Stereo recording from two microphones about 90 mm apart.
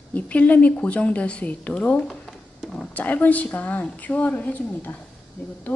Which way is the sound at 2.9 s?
20° left (ahead or behind).